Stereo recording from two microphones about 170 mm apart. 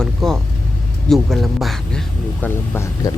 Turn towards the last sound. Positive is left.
turn(degrees=15)  # may be behind; listen again after turning